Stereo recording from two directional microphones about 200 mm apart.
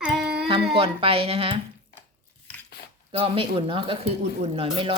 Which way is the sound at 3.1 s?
25° right (ahead or behind).